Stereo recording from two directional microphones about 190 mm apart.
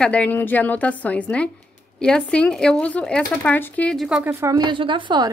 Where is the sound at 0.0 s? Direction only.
5° left (ahead or behind).